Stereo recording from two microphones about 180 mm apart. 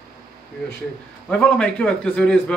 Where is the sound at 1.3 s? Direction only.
5° left (ahead or behind).